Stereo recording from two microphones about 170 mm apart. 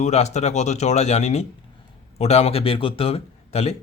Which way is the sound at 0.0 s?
40° left (ahead or behind).